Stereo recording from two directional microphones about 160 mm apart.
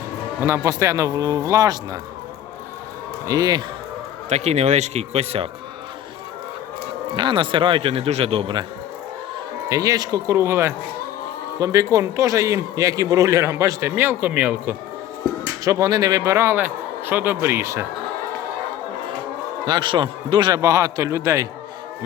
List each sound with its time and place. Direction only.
0.4 s a man's voice: 15° right (ahead or behind)
3.2 s a man's voice: 25° right (ahead or behind)
4.3 s speech: 45° right (ahead or behind)
7.2 s speech: 30° right (ahead or behind)
9.6 s a man's voice: 20° right (ahead or behind)
19.6 s a man's voice: 30° right (ahead or behind)